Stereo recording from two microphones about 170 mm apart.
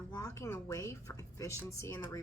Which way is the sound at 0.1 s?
20° left (ahead or behind).